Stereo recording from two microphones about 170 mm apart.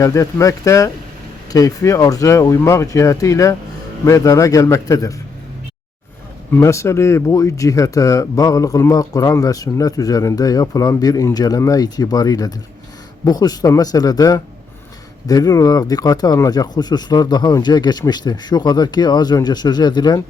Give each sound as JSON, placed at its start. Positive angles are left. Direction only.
{"t": 0.0, "sound": "speech", "side_deg": 20}
{"t": 6.5, "sound": "speech", "side_deg": 15}